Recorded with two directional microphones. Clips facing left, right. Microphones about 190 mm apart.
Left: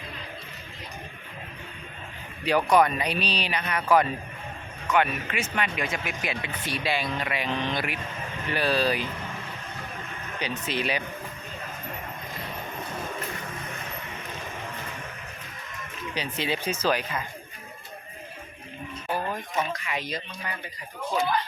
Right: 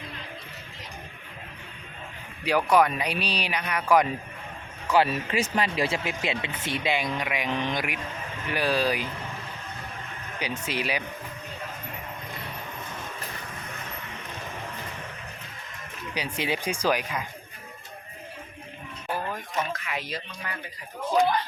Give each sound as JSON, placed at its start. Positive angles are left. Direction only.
{"t": 2.4, "sound": "speech", "side_deg": -10}
{"t": 4.9, "sound": "speech", "side_deg": -30}
{"t": 10.4, "sound": "speech", "side_deg": -10}
{"t": 16.1, "sound": "speech", "side_deg": -10}
{"t": 19.3, "sound": "speech", "side_deg": 0}